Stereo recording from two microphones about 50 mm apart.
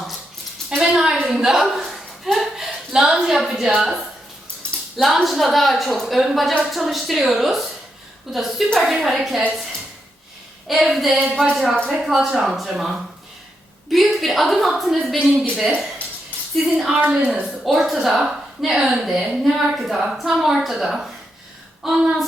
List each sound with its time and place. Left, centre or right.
0.8 s a sound: centre
1.3 s a woman's voice: centre
1.9 s a sound: centre
4.6 s cutlery: left
4.9 s a woman's voice: centre
10.7 s a woman's voice: centre
17.1 s a woman's voice: centre
17.6 s a woman's voice: centre